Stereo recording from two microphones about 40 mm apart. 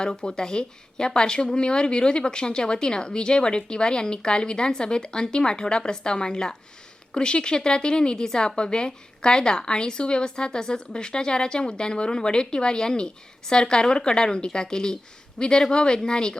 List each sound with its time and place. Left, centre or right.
0.0 s speech: centre